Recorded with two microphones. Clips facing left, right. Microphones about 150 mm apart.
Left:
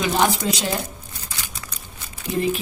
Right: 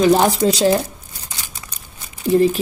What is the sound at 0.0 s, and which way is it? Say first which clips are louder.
Speech: right 7 dB; 35° right (ahead or behind).